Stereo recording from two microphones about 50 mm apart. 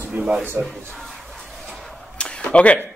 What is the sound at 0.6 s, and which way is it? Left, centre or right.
Speech, right.